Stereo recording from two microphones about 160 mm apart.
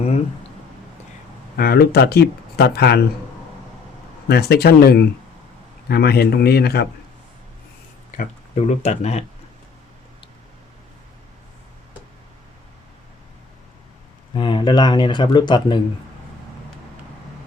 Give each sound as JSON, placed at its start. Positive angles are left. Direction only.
{"t": 1.5, "sound": "speech", "side_deg": 70}
{"t": 4.3, "sound": "speech", "side_deg": 85}
{"t": 8.1, "sound": "a sound", "side_deg": 60}
{"t": 8.5, "sound": "speech", "side_deg": 45}
{"t": 14.3, "sound": "speech", "side_deg": 30}